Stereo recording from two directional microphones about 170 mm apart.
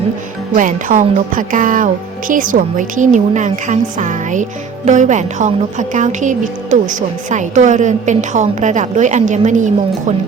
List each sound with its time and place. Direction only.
0.5 s a woman's voice: 50° right (ahead or behind)